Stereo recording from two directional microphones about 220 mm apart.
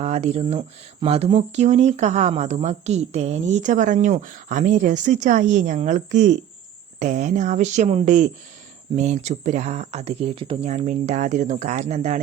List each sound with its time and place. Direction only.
0.0 s speech: 30° right (ahead or behind)